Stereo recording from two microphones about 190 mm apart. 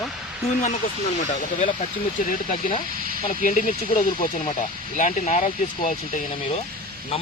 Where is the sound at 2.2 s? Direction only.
45° left (ahead or behind).